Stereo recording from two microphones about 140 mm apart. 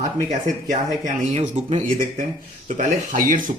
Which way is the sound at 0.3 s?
60° right (ahead or behind).